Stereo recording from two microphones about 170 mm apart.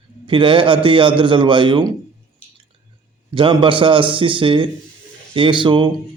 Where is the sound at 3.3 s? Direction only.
30° right (ahead or behind).